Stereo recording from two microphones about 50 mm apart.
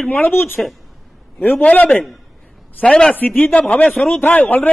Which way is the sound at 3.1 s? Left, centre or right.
Left.